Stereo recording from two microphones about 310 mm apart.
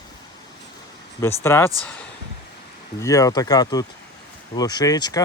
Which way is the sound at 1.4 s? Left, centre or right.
Centre.